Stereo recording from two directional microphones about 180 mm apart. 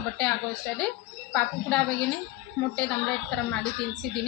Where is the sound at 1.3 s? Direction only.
5° left (ahead or behind).